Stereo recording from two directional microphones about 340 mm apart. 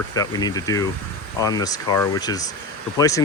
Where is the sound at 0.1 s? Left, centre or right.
Centre.